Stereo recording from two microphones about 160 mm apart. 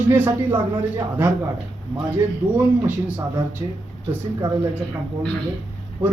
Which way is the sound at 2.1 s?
10° right (ahead or behind).